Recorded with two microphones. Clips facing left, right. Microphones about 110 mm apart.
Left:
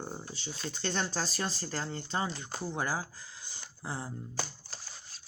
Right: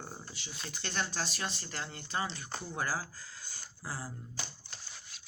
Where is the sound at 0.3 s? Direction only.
30° left (ahead or behind).